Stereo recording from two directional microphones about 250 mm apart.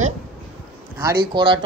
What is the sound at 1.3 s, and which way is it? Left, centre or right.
Speech, centre.